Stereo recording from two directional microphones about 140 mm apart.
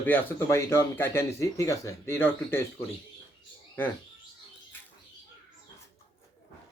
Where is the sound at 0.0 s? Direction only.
15° left (ahead or behind).